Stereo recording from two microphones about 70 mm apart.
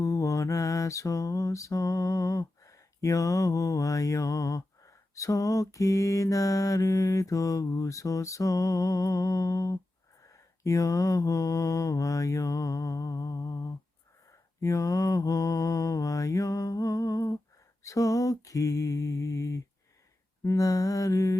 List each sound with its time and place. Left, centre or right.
0.0 s mantra: left